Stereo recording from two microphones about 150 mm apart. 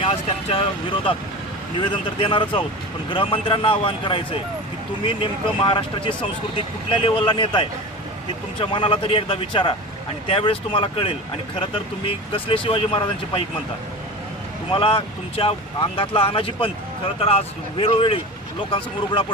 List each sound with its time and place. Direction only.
0.0 s speech: 40° left (ahead or behind)
14.7 s speech: 35° left (ahead or behind)